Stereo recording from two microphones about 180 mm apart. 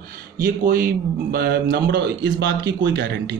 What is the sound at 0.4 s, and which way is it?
Speech, 50° right (ahead or behind).